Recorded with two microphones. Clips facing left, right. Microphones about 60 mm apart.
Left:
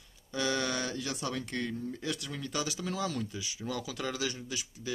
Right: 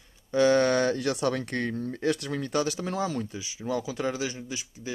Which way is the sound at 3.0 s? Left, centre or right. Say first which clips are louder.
Right 4 dB; right.